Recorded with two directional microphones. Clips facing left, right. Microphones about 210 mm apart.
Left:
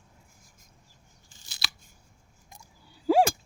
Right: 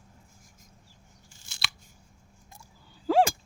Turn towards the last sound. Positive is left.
turn(degrees=10)  # may be behind; listen again after turning